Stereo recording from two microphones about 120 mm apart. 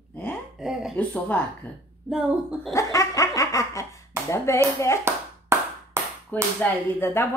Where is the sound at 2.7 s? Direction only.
25° left (ahead or behind).